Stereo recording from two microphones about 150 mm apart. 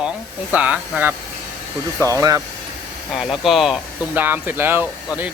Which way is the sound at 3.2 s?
Centre (ahead or behind).